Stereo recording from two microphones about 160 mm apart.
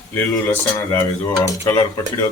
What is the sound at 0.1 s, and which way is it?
Speech, 10° left (ahead or behind).